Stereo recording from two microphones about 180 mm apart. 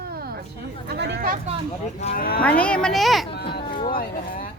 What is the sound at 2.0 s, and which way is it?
Speech, 40° left (ahead or behind).